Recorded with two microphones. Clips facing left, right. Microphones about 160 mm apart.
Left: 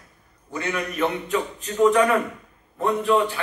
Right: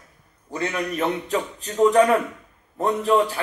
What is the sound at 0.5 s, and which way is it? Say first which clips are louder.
A man's voice: right 2 dB; 35° right (ahead or behind).